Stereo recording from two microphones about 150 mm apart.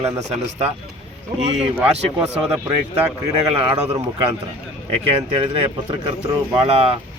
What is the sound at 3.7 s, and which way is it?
Speech, 30° right (ahead or behind).